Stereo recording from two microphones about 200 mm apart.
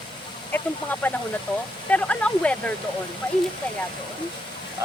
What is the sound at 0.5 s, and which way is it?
Speech, 10° left (ahead or behind).